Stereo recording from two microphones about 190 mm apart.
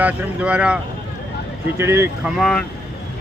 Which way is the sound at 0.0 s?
5° right (ahead or behind).